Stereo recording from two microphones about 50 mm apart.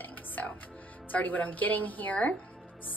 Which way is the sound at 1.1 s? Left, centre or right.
Left.